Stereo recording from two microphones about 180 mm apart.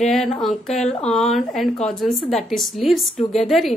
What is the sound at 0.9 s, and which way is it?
Speech, 35° left (ahead or behind).